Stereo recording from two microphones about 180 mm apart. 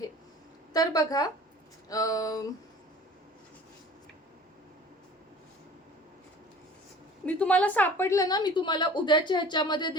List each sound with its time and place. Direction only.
0.7 s a woman's voice: 20° left (ahead or behind)
7.3 s a woman's voice: 5° left (ahead or behind); by 9.9 s 25° left (ahead or behind)